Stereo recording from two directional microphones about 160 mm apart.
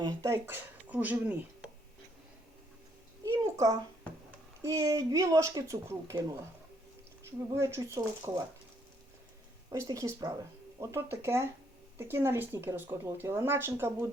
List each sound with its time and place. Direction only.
0.0 s speech: 20° right (ahead or behind)
3.2 s a sound: 20° right (ahead or behind)
4.6 s speech: 20° right (ahead or behind)
7.5 s speech: 20° right (ahead or behind)
9.6 s speech: 20° right (ahead or behind)